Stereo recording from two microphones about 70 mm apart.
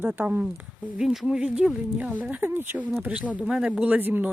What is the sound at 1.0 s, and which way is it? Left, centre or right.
Speech, centre.